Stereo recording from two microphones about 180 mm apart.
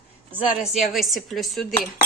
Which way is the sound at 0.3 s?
5° right (ahead or behind).